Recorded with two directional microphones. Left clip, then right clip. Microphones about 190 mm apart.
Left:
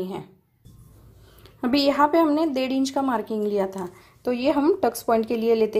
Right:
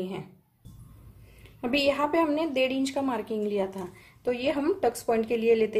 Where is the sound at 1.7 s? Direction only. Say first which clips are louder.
Left 5 dB; 30° left (ahead or behind).